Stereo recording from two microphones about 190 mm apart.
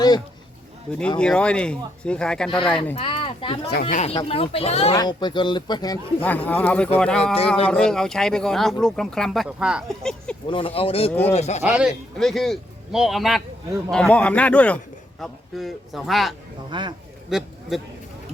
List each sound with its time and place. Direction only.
0.9 s speech: 5° left (ahead or behind)
2.9 s speech: 30° left (ahead or behind)
3.7 s speech: 50° left (ahead or behind)
4.1 s speech: 30° left (ahead or behind)
6.2 s speech: 10° left (ahead or behind)
7.3 s speech: 30° left (ahead or behind)
7.7 s speech: 5° left (ahead or behind)
10.5 s speech: 30° left (ahead or behind)
11.7 s speech: 5° right (ahead or behind)
16.6 s speech: 25° right (ahead or behind)
17.2 s speech: centre (ahead or behind)